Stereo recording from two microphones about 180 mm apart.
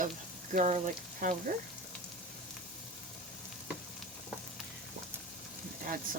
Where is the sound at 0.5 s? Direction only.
45° right (ahead or behind).